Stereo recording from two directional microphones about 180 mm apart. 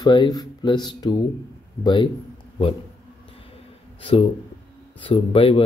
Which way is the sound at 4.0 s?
30° left (ahead or behind).